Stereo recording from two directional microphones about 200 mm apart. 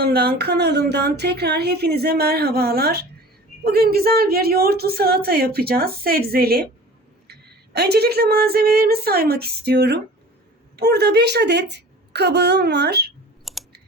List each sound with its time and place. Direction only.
0.0 s a woman's voice: 55° right (ahead or behind)
13.4 s clicking: centre (ahead or behind)